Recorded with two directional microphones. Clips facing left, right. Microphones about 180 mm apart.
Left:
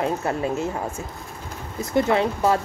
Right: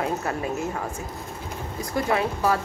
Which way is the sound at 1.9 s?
25° left (ahead or behind).